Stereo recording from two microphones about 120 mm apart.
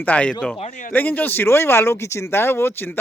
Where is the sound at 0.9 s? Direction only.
15° left (ahead or behind).